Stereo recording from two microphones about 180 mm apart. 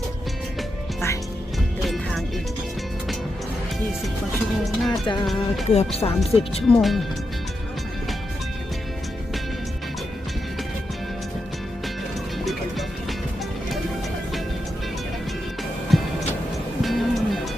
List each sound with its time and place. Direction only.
1.8 s music: centre (ahead or behind)
4.8 s speech: centre (ahead or behind)
5.6 s speech: 35° left (ahead or behind)
6.7 s speech: 5° left (ahead or behind)
15.9 s music: centre (ahead or behind)